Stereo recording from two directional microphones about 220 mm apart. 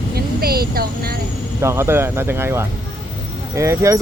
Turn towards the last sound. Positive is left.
turn(degrees=-15)  # may be behind; listen again after turning